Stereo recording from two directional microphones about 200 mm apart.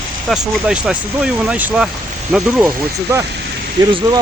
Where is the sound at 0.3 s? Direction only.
5° right (ahead or behind).